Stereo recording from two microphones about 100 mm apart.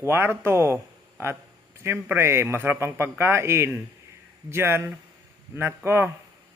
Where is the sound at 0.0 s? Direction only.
25° right (ahead or behind).